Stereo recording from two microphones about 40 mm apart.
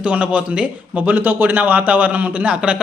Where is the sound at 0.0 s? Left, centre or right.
Right.